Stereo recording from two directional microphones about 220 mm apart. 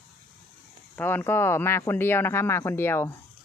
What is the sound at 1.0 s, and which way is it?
Speech, 10° left (ahead or behind).